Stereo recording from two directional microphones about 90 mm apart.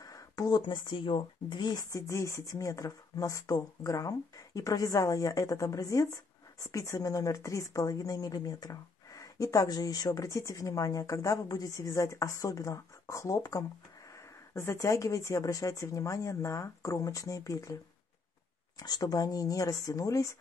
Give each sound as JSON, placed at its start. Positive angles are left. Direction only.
{"t": 0.0, "sound": "a sound", "side_deg": 40}
{"t": 0.6, "sound": "speech", "side_deg": 60}
{"t": 18.8, "sound": "speech", "side_deg": 45}